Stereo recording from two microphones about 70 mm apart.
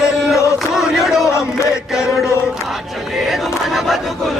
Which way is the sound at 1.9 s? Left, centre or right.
Centre.